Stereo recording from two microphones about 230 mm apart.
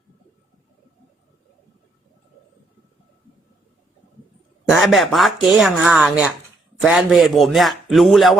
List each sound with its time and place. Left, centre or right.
4.7 s speech: centre